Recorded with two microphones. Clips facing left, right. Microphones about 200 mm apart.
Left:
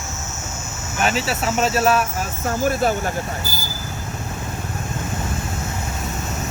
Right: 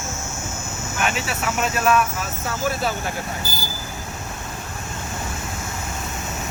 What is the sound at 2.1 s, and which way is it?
Speech, 45° left (ahead or behind).